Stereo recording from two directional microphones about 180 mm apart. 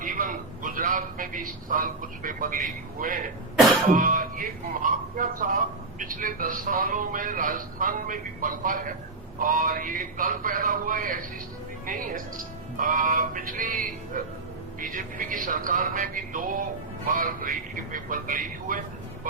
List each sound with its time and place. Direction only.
0.0 s a man's voice: 50° right (ahead or behind)